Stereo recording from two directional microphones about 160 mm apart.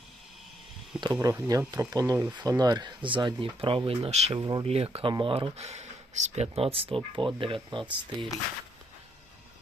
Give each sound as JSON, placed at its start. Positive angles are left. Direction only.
{"t": 1.2, "sound": "speech", "side_deg": -20}